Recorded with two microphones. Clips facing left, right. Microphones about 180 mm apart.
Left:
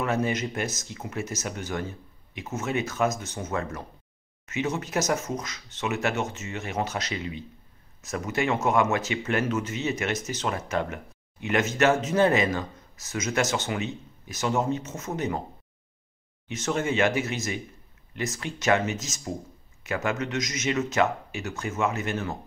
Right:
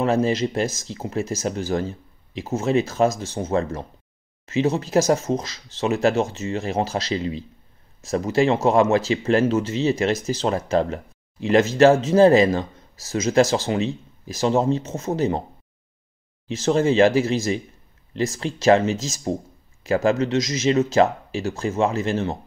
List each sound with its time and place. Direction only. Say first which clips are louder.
0.0 s speech: right 6 dB; 30° right (ahead or behind)
16.4 s speech: right 8 dB; 30° right (ahead or behind)